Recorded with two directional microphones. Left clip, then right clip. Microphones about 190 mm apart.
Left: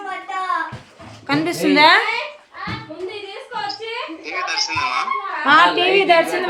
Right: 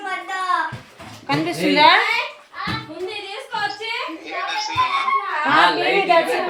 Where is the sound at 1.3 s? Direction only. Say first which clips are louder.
Left 2 dB; 30° left (ahead or behind).